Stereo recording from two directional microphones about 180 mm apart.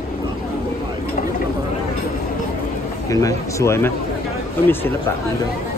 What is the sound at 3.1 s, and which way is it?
Speech, 20° left (ahead or behind).